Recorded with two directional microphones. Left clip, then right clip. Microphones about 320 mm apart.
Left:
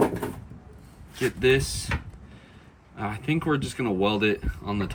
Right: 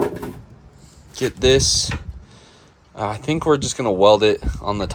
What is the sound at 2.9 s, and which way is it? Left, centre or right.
Speech, centre.